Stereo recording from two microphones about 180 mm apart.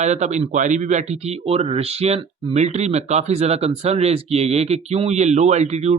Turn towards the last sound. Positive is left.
turn(degrees=-40)  # may be behind; listen again after turning